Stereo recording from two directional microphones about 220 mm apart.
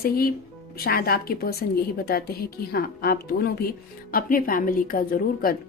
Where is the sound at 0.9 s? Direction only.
45° left (ahead or behind).